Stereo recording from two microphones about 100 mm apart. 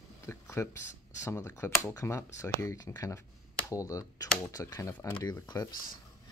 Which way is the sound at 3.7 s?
35° left (ahead or behind).